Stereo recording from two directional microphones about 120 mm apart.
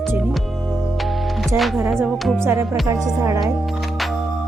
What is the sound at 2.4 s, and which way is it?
Speech, 25° right (ahead or behind).